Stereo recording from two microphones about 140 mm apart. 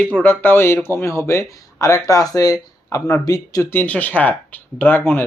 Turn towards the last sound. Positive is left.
turn(degrees=15)  # may be behind; listen again after turning